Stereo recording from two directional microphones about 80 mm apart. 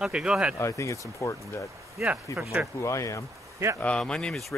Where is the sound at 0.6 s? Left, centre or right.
Left.